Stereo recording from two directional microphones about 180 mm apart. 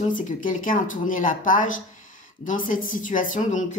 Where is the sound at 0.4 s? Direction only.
50° left (ahead or behind).